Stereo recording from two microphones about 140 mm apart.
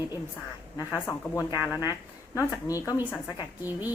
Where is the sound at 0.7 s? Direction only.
20° left (ahead or behind).